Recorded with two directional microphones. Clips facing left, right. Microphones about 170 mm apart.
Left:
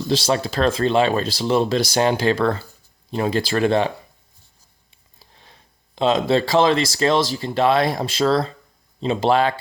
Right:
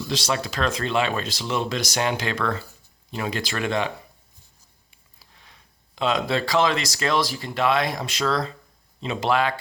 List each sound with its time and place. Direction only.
0.1 s speech: 30° left (ahead or behind)
5.2 s speech: 30° left (ahead or behind)